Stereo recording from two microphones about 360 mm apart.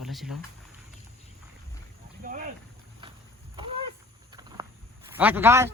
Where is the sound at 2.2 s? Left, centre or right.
Right.